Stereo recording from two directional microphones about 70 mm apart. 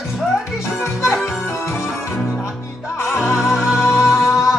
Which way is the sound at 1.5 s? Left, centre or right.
Left.